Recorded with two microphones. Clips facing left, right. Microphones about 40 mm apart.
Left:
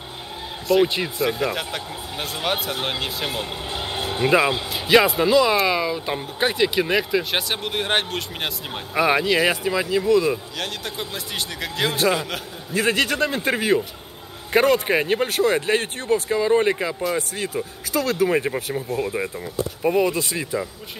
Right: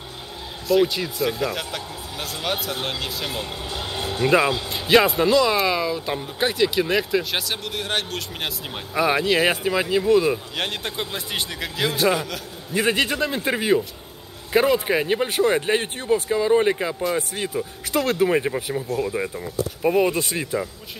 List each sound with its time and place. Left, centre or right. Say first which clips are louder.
0.8 s speech: left 2 dB; left
1.2 s speech: left 1 dB; centre
4.8 s speech: even; centre; by 8.2 s left
8.4 s speech: left 1 dB; centre
9.3 s speech: even; centre
11.1 s speech: right 1 dB; centre
11.7 s speech: even; centre
12.7 s speech: even; centre
13.1 s speech: left 1 dB; centre
15.2 s speech: even; centre
17.9 s speech: right 1 dB; right
18.5 s speech: even; centre
20.1 s speech: even; centre